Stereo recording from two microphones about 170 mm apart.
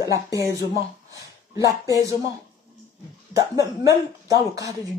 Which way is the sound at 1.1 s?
20° right (ahead or behind).